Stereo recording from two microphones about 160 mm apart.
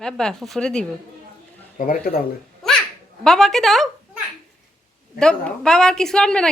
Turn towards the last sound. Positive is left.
turn(degrees=5)  # may be behind; listen again after turning